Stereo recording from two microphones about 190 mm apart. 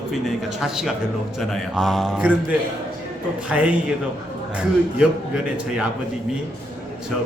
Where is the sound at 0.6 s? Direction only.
5° right (ahead or behind).